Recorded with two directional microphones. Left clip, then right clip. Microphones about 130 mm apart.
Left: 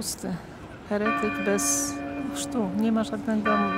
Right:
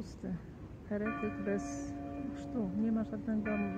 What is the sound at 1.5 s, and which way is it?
Speech, 30° left (ahead or behind).